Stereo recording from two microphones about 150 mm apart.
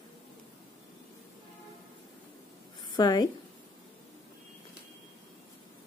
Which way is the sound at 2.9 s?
25° left (ahead or behind).